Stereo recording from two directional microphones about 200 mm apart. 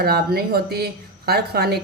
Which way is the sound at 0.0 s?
50° right (ahead or behind).